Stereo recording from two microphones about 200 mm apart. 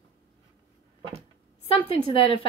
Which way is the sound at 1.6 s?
25° left (ahead or behind).